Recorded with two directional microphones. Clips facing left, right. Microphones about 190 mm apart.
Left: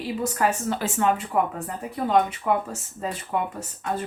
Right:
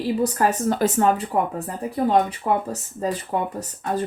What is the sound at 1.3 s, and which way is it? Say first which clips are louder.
Speech: right 1 dB; 30° right (ahead or behind).